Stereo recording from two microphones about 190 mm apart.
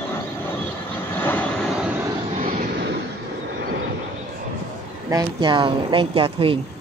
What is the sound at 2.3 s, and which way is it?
Vehicle, 40° right (ahead or behind).